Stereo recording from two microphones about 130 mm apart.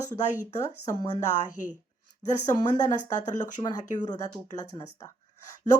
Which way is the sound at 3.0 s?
70° left (ahead or behind).